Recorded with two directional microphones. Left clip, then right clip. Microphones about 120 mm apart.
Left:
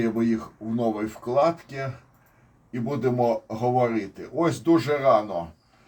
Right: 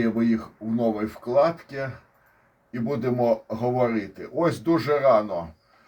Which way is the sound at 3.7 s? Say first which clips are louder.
Left 1 dB; 30° right (ahead or behind).